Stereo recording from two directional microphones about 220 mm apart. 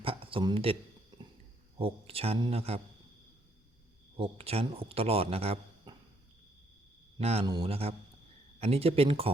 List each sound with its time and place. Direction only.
0.0 s a man's voice: 25° right (ahead or behind)
1.8 s speech: 25° right (ahead or behind)
4.2 s speech: 25° right (ahead or behind)
7.2 s speech: 30° right (ahead or behind)